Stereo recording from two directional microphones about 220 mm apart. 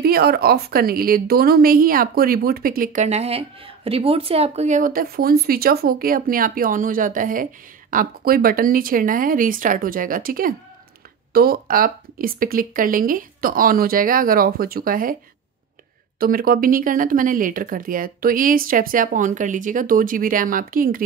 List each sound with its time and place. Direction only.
0.0 s a woman's voice: 45° right (ahead or behind)
16.2 s a woman's voice: 40° right (ahead or behind)